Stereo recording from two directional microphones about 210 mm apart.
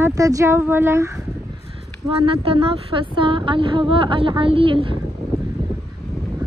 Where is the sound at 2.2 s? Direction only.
25° right (ahead or behind).